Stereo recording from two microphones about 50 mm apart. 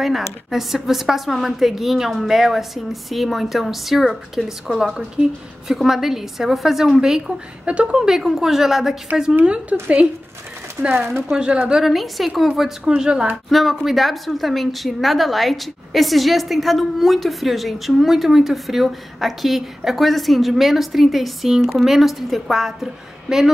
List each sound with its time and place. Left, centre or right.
0.0 s a woman's voice: centre
7.6 s a woman's voice: right
8.1 s a woman's voice: centre
11.6 s a woman's voice: centre
13.5 s a woman's voice: centre